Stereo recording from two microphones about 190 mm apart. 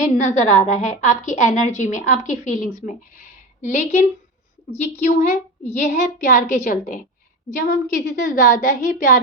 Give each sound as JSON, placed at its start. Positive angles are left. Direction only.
{"t": 0.1, "sound": "a woman's voice", "side_deg": 40}